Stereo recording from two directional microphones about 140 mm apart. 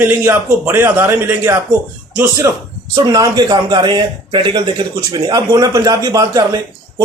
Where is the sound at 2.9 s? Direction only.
25° right (ahead or behind).